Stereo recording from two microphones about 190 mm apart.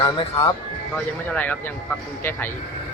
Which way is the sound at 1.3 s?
10° left (ahead or behind).